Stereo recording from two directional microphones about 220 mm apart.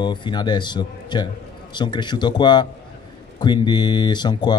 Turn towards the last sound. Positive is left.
turn(degrees=20)  # may be behind; listen again after turning